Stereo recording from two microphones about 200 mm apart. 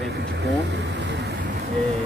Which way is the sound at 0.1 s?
55° right (ahead or behind).